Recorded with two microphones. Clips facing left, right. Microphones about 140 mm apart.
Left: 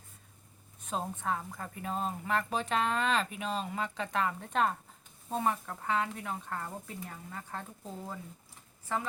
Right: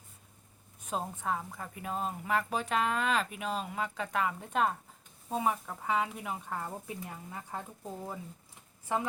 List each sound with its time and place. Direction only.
0.9 s a woman's voice: 5° right (ahead or behind)